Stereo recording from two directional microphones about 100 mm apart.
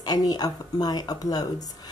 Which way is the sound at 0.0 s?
40° left (ahead or behind).